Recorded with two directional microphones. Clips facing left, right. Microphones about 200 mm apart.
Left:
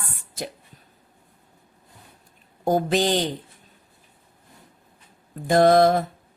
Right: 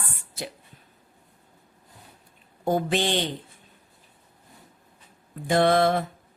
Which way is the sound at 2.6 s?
40° left (ahead or behind).